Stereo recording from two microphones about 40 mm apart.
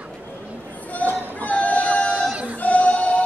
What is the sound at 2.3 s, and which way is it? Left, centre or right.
Music, right.